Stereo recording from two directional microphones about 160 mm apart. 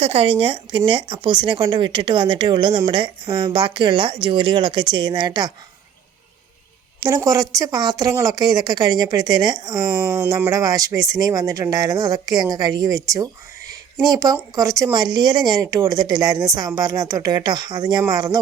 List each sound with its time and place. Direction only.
0.0 s a woman's voice: 40° right (ahead or behind)
7.0 s a woman's voice: 20° right (ahead or behind)